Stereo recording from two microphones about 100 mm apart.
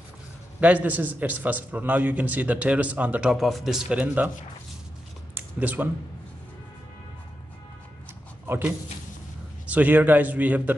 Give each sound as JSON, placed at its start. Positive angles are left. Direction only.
{"t": 0.6, "sound": "a man's voice", "side_deg": -15}
{"t": 3.3, "sound": "speech", "side_deg": 0}
{"t": 5.6, "sound": "a man's voice", "side_deg": -15}
{"t": 8.5, "sound": "a man's voice", "side_deg": -20}